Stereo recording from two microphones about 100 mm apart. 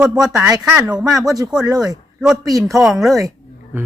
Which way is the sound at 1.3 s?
40° right (ahead or behind).